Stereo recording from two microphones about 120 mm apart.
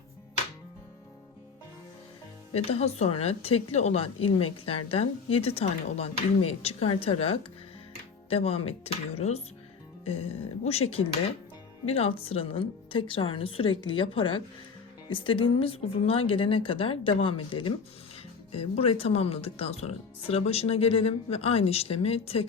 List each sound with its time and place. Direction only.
2.5 s speech: 60° left (ahead or behind)
18.5 s speech: 55° left (ahead or behind)